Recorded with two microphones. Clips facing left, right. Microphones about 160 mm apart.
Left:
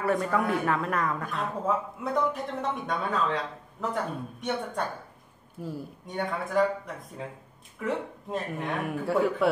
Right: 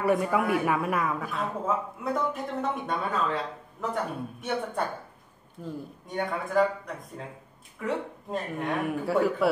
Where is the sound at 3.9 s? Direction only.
5° right (ahead or behind).